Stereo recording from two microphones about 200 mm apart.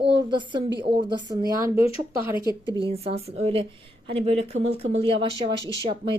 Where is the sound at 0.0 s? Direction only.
25° right (ahead or behind).